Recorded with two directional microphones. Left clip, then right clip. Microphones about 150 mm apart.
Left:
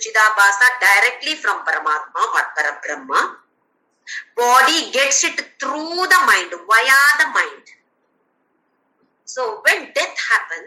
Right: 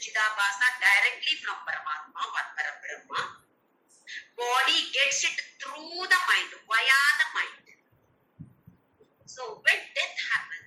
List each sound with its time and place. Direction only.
0.0 s a woman's voice: 90° left
9.2 s a woman's voice: 90° left